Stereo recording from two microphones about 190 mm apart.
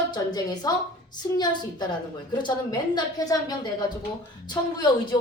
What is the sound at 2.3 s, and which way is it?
A woman's voice, 20° left (ahead or behind).